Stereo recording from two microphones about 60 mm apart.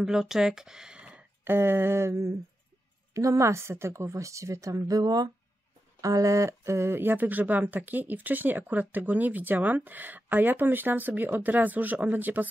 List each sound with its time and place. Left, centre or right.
0.0 s speech: centre
1.4 s speech: right
3.2 s a woman's voice: right
5.9 s speech: right